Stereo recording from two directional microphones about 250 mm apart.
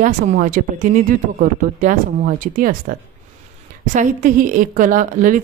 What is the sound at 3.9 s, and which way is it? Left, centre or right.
Speech, right.